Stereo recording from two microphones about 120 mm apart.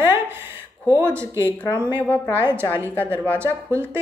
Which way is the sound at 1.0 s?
20° right (ahead or behind).